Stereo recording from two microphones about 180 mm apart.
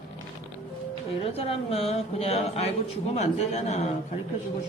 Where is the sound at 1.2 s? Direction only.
30° left (ahead or behind).